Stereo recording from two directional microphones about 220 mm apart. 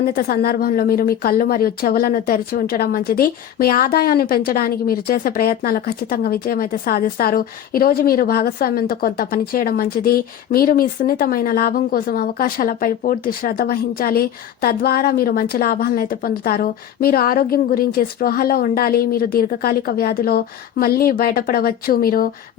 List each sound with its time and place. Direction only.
0.1 s a woman's voice: 45° left (ahead or behind)